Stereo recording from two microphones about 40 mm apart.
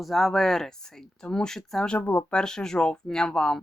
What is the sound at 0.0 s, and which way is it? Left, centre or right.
Speech, centre.